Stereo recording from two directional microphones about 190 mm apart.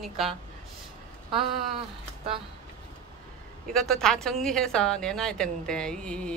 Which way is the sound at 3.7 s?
Centre (ahead or behind).